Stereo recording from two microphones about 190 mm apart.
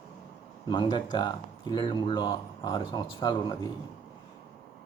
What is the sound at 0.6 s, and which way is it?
Speech, 25° left (ahead or behind).